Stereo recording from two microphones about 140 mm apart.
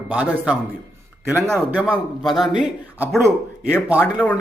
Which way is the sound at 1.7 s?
10° right (ahead or behind).